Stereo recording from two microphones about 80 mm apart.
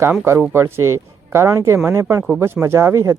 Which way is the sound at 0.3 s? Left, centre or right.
Right.